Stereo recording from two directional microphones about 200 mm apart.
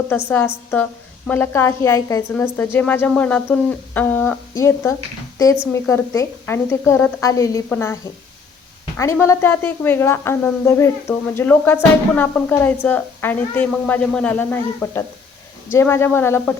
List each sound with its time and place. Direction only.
0.1 s a woman's voice: 10° left (ahead or behind)
9.0 s a woman's voice: 15° left (ahead or behind)